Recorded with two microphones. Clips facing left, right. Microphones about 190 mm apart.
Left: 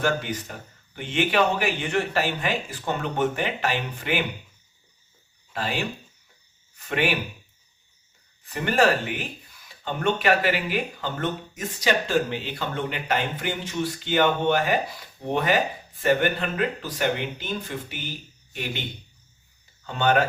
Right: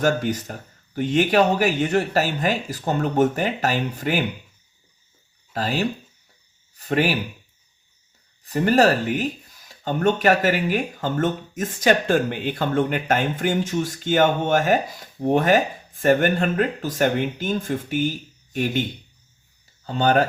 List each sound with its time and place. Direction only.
0.0 s speech: 40° right (ahead or behind)
5.5 s speech: 40° right (ahead or behind)
8.5 s speech: 40° right (ahead or behind)
19.8 s speech: 35° right (ahead or behind)